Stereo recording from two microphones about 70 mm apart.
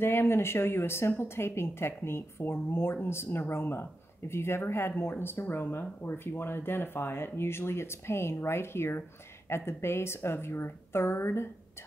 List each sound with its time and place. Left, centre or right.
0.0 s speech: left